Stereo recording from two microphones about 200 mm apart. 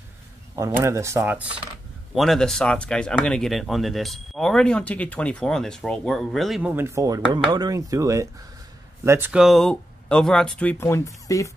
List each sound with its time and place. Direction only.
0.6 s speech: 15° right (ahead or behind)
2.1 s speech: centre (ahead or behind)